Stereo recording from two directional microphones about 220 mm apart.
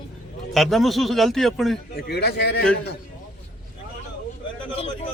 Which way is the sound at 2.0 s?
45° left (ahead or behind).